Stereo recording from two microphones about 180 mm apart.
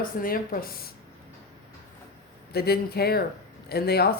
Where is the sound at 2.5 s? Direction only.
60° left (ahead or behind).